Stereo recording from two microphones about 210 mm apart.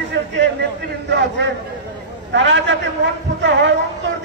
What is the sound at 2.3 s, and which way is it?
Speech, 60° right (ahead or behind).